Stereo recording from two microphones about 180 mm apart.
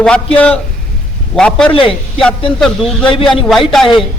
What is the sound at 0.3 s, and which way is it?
A woman's voice, 5° left (ahead or behind).